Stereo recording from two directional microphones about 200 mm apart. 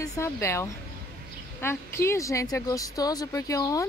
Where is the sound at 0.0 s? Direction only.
15° left (ahead or behind).